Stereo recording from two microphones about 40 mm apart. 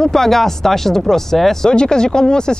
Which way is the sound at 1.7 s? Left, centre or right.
Centre.